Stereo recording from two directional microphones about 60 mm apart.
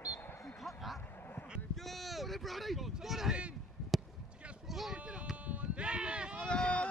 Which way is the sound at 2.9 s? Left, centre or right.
Centre.